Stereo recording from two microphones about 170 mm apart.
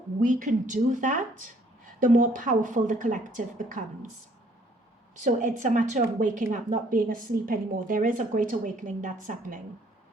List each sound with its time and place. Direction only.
0.2 s speech: 50° right (ahead or behind)
5.1 s speech: 45° right (ahead or behind)